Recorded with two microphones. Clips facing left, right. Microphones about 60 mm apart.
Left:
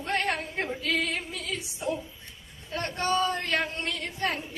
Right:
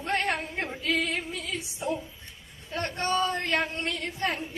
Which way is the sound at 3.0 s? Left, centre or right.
Right.